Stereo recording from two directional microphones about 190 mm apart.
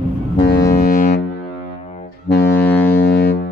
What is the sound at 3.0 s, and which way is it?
Music, 55° left (ahead or behind).